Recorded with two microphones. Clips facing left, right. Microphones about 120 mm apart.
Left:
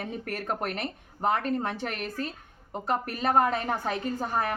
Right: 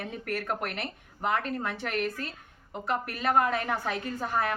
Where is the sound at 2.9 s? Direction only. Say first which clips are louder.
Left 1 dB; 35° left (ahead or behind).